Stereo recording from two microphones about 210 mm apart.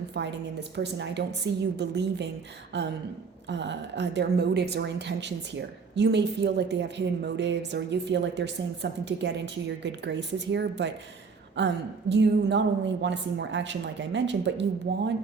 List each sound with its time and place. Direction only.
0.1 s a woman's voice: 55° right (ahead or behind)
3.5 s a woman's voice: 55° right (ahead or behind)